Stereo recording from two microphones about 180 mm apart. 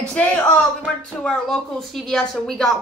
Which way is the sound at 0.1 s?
5° left (ahead or behind).